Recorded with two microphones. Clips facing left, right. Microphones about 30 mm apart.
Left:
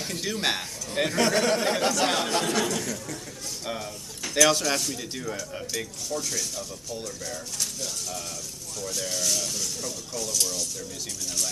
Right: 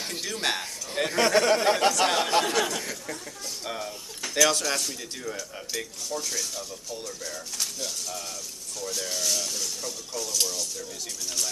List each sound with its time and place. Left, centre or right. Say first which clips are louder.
0.2 s speech: left 1 dB; centre
1.1 s speech: right 3 dB; centre
2.8 s speech: left 2 dB; centre
3.6 s speech: left 1 dB; centre
8.8 s speech: even; centre